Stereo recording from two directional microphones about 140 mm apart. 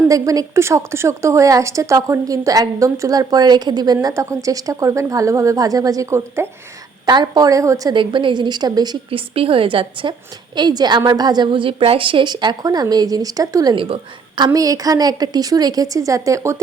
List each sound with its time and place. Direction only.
0.1 s a woman's voice: 25° right (ahead or behind)
7.0 s a woman's voice: 30° right (ahead or behind)
7.9 s a woman's voice: 35° right (ahead or behind)
13.7 s a woman's voice: 35° right (ahead or behind); by 16.6 s 20° right (ahead or behind)